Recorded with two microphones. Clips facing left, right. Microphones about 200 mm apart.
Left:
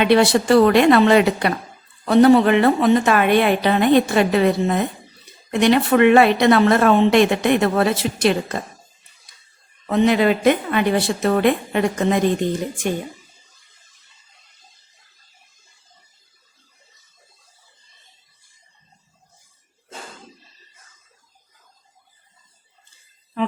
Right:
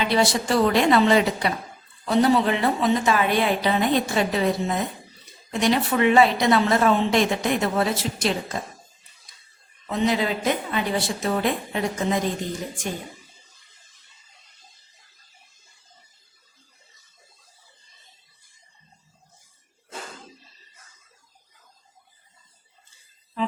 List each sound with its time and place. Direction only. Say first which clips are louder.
0.0 s speech: left 7 dB; 65° left (ahead or behind)
9.8 s speech: left 7 dB; 60° left (ahead or behind)